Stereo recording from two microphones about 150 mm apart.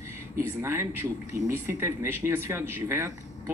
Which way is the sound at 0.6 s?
15° right (ahead or behind).